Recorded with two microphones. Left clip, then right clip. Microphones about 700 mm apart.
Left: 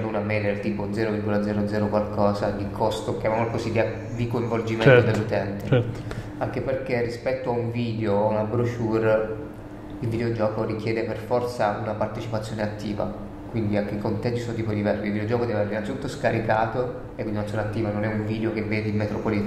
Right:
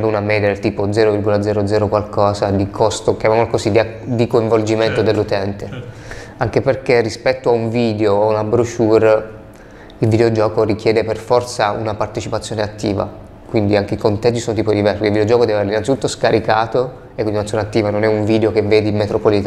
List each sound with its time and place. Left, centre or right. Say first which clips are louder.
0.1 s speech: right 10 dB; right
6.5 s speech: right 13 dB; right